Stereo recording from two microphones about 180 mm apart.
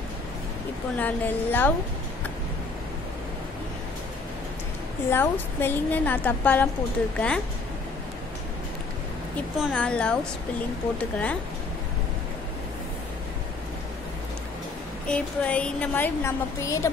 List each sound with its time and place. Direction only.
0.9 s a woman's voice: 10° left (ahead or behind)
5.1 s a woman's voice: 10° left (ahead or behind)
9.6 s a woman's voice: centre (ahead or behind)
15.0 s a woman's voice: 5° left (ahead or behind)